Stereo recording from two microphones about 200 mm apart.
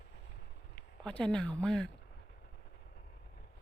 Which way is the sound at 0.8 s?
5° left (ahead or behind).